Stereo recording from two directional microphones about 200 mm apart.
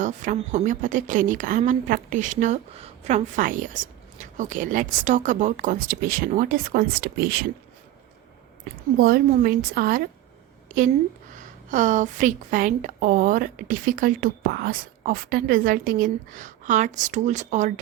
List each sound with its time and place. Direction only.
0.0 s speech: 40° right (ahead or behind)
9.0 s a woman's voice: 50° right (ahead or behind)
11.3 s a woman's voice: 40° right (ahead or behind)